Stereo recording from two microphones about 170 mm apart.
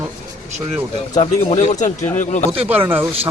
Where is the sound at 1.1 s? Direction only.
45° left (ahead or behind).